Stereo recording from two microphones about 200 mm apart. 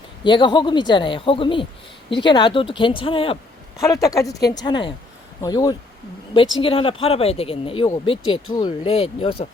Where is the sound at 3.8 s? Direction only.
15° left (ahead or behind).